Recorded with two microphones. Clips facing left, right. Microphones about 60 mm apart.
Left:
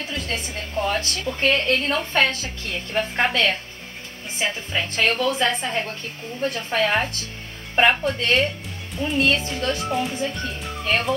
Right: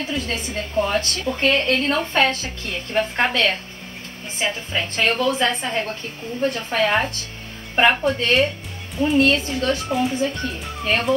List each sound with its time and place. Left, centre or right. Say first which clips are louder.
0.1 s a woman's voice: right 3 dB; centre
1.2 s a woman's voice: right 1 dB; centre